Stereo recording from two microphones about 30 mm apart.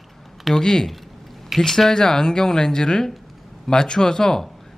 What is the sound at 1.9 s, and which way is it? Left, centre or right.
Speech, left.